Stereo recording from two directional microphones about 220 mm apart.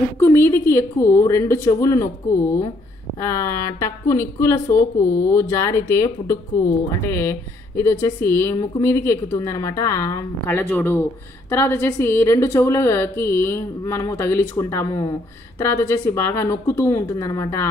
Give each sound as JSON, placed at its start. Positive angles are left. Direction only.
{"t": 0.2, "sound": "a woman's voice", "side_deg": 10}
{"t": 3.2, "sound": "a woman's voice", "side_deg": 15}